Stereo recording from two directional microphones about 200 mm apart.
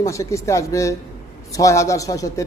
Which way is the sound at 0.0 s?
15° left (ahead or behind).